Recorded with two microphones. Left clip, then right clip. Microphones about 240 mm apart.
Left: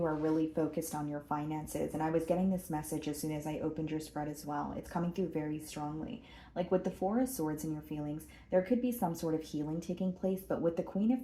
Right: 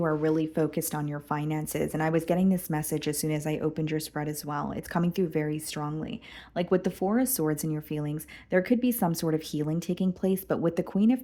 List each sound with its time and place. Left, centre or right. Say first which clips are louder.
0.0 s speech: right 6 dB; right